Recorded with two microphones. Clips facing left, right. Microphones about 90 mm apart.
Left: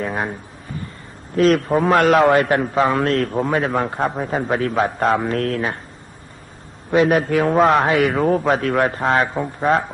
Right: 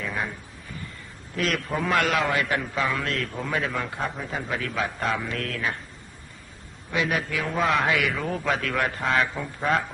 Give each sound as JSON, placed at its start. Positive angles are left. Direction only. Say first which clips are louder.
{"t": 0.0, "sound": "a sound", "louder": "left 7 dB", "side_deg": 40}
{"t": 1.4, "sound": "a man's voice", "louder": "left 11 dB", "side_deg": 35}
{"t": 6.9, "sound": "a man's voice", "louder": "left 11 dB", "side_deg": 45}
{"t": 8.2, "sound": "a man's voice", "louder": "left 10 dB", "side_deg": 50}
{"t": 9.3, "sound": "speech", "louder": "left 8 dB", "side_deg": 25}